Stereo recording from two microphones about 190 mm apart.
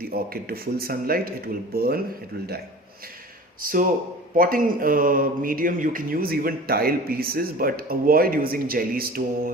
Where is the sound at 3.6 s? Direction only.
45° right (ahead or behind).